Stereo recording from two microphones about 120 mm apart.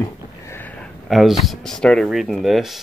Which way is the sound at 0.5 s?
15° left (ahead or behind).